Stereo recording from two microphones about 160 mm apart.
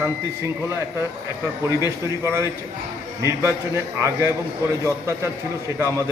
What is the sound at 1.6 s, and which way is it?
A man's voice, 20° right (ahead or behind).